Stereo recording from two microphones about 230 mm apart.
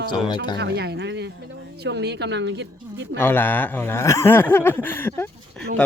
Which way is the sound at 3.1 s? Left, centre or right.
Centre.